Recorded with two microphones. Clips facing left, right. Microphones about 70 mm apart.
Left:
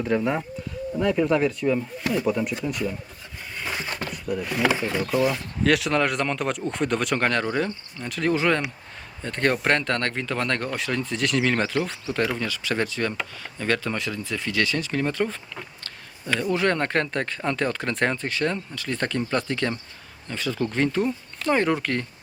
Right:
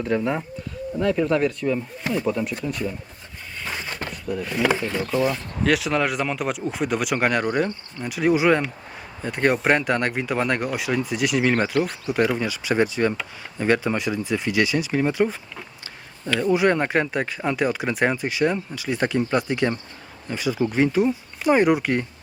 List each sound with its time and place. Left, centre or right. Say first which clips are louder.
0.0 s speech: even; centre
3.6 s a sound: left 1 dB; centre
4.3 s speech: right 1 dB; centre
5.6 s speech: even; centre
16.5 s speech: right 4 dB; centre